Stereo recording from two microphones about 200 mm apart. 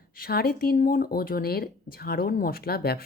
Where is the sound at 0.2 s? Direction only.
50° left (ahead or behind).